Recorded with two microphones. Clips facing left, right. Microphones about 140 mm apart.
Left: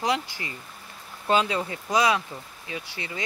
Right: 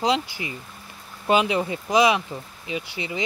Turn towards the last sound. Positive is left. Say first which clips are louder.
# right 5 dB
turn(degrees=-20)  # may be behind; listen again after turning